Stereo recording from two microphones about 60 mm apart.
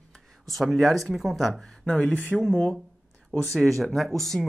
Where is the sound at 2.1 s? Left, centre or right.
Left.